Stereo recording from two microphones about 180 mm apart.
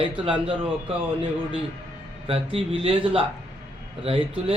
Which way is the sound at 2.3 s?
30° right (ahead or behind).